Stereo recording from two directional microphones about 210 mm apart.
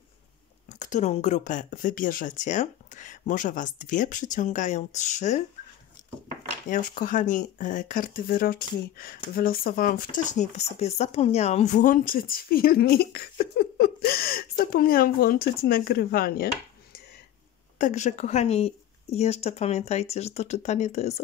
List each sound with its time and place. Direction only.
0.7 s speech: 35° left (ahead or behind)
6.7 s speech: 40° left (ahead or behind)
17.7 s speech: 35° left (ahead or behind)